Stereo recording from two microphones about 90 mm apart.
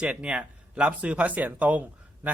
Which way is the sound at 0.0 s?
10° right (ahead or behind).